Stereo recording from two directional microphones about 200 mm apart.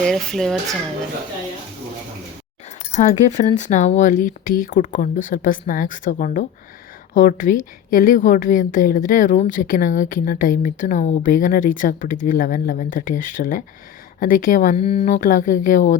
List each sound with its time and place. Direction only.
0.0 s speech: centre (ahead or behind)
2.9 s a woman's voice: 35° left (ahead or behind)
15.0 s a woman's voice: 40° left (ahead or behind)